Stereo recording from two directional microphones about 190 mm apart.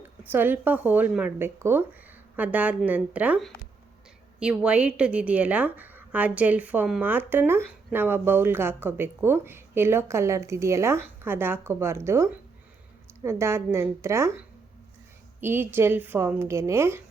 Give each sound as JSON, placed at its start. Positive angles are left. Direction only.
{"t": 0.0, "sound": "a woman's voice", "side_deg": -10}
{"t": 15.4, "sound": "a woman's voice", "side_deg": -10}